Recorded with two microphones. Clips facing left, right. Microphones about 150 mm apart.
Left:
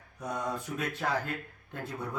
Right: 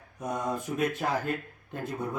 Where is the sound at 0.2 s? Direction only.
20° right (ahead or behind).